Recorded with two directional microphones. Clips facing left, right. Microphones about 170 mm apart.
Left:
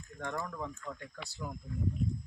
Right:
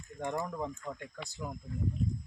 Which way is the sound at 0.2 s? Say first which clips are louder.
Right 3 dB; 20° right (ahead or behind).